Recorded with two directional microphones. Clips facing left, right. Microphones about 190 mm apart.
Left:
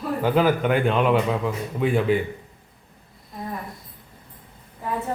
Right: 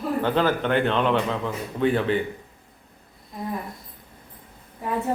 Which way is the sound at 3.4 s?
Centre (ahead or behind).